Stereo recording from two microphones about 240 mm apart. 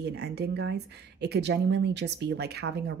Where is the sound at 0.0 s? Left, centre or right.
Right.